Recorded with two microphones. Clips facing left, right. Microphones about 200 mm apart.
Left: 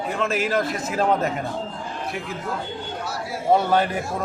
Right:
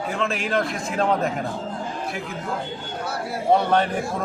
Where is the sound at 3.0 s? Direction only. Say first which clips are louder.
Right 4 dB; 60° right (ahead or behind).